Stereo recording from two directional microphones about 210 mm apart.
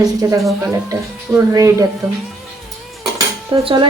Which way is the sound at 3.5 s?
20° right (ahead or behind).